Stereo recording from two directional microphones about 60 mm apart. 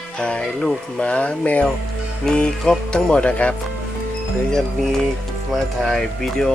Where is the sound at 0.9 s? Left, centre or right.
Centre.